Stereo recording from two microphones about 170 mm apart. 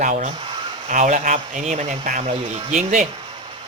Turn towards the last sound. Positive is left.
turn(degrees=-35)  # may be behind; listen again after turning